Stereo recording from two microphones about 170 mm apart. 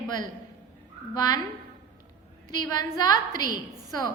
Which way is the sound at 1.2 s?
20° left (ahead or behind).